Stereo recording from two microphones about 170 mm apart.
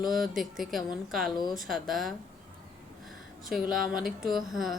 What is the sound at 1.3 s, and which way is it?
Speech, 25° left (ahead or behind).